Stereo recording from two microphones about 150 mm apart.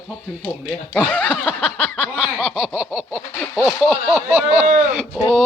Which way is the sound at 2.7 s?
5° right (ahead or behind).